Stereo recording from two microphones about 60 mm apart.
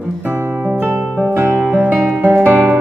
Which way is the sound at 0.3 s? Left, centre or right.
Right.